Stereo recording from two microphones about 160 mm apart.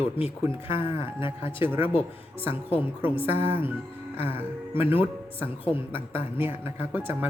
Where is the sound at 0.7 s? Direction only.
30° left (ahead or behind).